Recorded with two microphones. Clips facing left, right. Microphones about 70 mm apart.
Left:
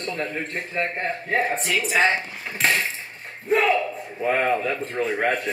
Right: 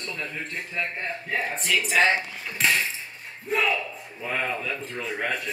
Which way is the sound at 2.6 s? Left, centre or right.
Left.